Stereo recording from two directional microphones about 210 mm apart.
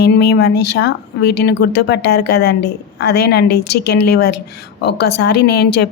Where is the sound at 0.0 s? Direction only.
50° left (ahead or behind).